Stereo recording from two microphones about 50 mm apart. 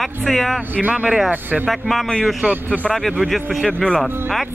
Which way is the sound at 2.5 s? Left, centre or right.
Right.